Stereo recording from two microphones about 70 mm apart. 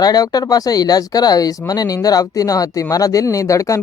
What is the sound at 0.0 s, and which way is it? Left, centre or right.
Speech, left.